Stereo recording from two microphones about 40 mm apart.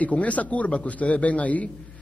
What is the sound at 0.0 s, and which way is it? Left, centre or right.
A man's voice, left.